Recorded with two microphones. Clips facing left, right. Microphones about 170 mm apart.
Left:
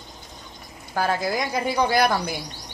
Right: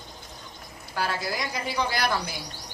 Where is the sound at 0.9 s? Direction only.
50° left (ahead or behind).